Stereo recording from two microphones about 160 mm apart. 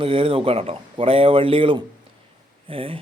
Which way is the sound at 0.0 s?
35° right (ahead or behind).